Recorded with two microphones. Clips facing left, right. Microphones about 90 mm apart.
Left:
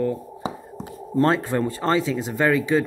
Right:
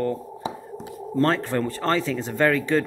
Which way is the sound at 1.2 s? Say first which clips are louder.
Left 2 dB; 15° left (ahead or behind).